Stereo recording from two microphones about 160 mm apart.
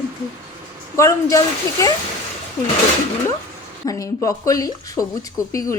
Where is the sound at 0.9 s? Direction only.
20° left (ahead or behind).